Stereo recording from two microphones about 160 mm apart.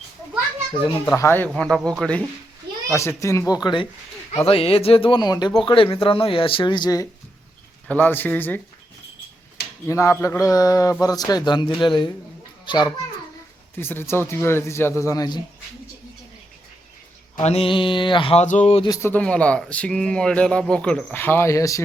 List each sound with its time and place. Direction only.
1.0 s speech: 15° left (ahead or behind)
1.5 s speech: 5° left (ahead or behind)
2.9 s a man's voice: 20° left (ahead or behind)
7.9 s speech: 10° left (ahead or behind)
9.8 s a man's voice: 15° left (ahead or behind)
13.7 s speech: 15° left (ahead or behind)
17.4 s speech: 40° left (ahead or behind)
18.4 s speech: 45° left (ahead or behind)
19.0 s speech: 10° left (ahead or behind)